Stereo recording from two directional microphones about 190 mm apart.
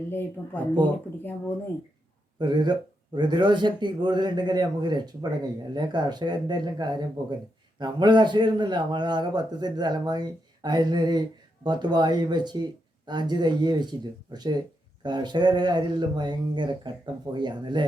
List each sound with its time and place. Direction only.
0.1 s speech: 10° left (ahead or behind)
2.4 s a man's voice: 20° right (ahead or behind)